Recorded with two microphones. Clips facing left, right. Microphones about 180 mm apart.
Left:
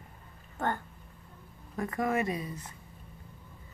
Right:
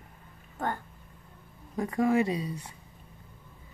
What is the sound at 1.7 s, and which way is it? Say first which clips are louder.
Speech: right 5 dB; 15° right (ahead or behind).